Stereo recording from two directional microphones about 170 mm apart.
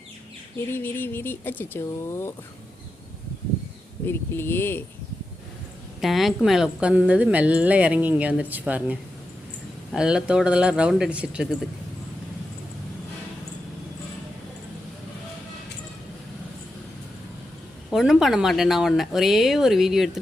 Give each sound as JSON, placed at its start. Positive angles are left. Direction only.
{"t": 0.7, "sound": "speech", "side_deg": 10}
{"t": 4.0, "sound": "speech", "side_deg": 15}
{"t": 6.0, "sound": "a woman's voice", "side_deg": 0}
{"t": 17.9, "sound": "speech", "side_deg": 0}